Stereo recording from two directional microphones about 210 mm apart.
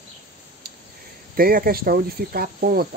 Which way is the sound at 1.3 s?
45° right (ahead or behind).